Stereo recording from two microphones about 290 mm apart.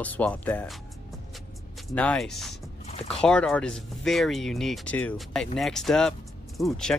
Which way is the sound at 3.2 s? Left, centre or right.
Centre.